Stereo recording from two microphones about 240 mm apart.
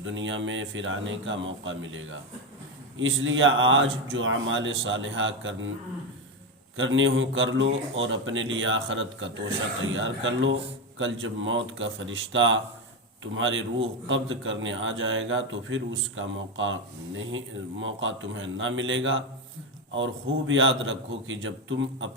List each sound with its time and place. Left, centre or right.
0.0 s speech: right
6.7 s speech: right
20.5 s a man's voice: right